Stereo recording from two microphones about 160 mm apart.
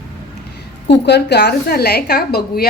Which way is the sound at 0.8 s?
90° left.